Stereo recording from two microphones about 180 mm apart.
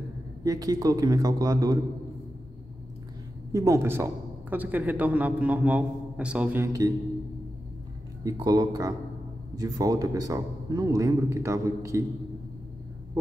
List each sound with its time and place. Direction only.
0.4 s speech: 20° right (ahead or behind)
3.5 s speech: 15° right (ahead or behind)
8.2 s speech: 20° right (ahead or behind)